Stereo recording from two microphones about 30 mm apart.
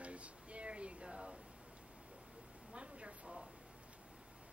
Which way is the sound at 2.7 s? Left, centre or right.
Right.